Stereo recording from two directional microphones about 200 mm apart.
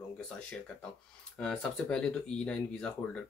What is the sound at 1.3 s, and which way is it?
Speech, 5° left (ahead or behind).